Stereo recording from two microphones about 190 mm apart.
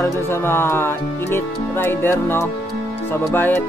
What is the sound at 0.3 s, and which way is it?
Speech, 10° left (ahead or behind).